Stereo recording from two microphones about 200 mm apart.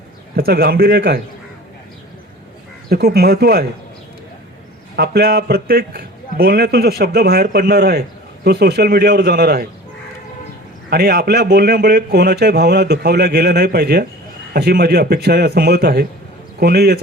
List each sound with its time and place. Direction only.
0.3 s a man's voice: 50° right (ahead or behind)
2.9 s a man's voice: 50° right (ahead or behind)
4.9 s a man's voice: 50° right (ahead or behind)
10.8 s a man's voice: 50° right (ahead or behind)